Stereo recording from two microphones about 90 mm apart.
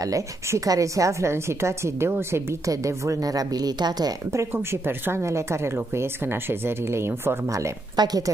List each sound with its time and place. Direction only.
0.1 s a woman's voice: 40° right (ahead or behind)
4.3 s a woman's voice: 30° right (ahead or behind)
7.9 s speech: 50° right (ahead or behind)